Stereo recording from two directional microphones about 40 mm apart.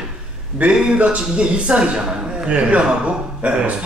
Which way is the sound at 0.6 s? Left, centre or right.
Right.